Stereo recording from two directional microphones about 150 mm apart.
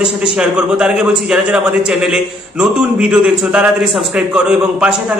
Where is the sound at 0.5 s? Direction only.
5° right (ahead or behind).